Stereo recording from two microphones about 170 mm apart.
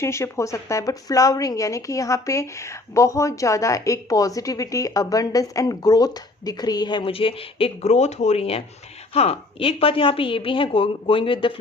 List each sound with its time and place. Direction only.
0.0 s a woman's voice: 15° left (ahead or behind)